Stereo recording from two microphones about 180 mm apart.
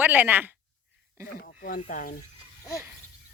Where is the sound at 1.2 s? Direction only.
55° left (ahead or behind).